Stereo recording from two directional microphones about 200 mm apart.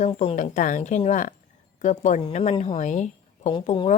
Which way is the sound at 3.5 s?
25° left (ahead or behind).